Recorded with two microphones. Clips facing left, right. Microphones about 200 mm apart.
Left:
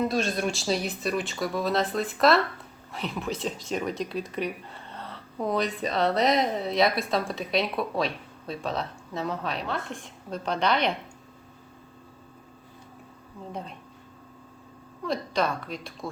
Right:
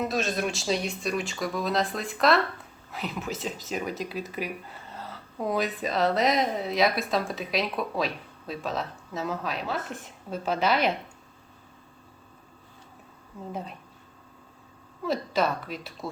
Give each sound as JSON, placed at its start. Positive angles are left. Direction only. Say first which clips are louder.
{"t": 0.0, "sound": "speech", "louder": "left 2 dB", "side_deg": 0}
{"t": 15.0, "sound": "speech", "louder": "right 1 dB", "side_deg": -5}